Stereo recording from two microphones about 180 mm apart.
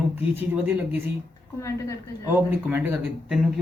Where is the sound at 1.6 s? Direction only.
15° left (ahead or behind).